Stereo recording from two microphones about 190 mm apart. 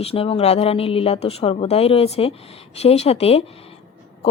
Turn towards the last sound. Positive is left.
turn(degrees=30)  # may be behind; listen again after turning